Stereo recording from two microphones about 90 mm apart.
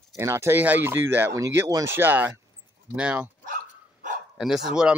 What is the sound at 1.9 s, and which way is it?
Speech, 20° right (ahead or behind).